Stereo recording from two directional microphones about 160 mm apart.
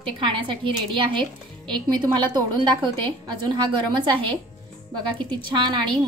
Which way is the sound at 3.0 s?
30° right (ahead or behind).